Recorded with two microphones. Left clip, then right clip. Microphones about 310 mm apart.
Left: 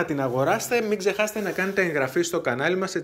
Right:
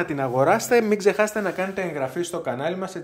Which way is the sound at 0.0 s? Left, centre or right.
Centre.